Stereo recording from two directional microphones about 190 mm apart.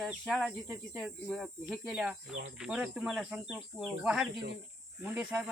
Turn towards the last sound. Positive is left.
turn(degrees=-5)  # may be behind; listen again after turning